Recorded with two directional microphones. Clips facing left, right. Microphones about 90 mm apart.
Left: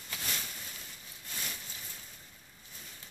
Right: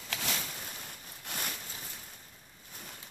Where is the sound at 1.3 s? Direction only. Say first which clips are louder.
Right 5 dB; 65° right (ahead or behind).